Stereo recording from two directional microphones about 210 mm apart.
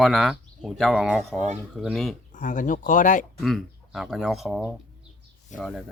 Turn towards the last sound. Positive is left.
turn(degrees=0)  # may be behind; listen again after turning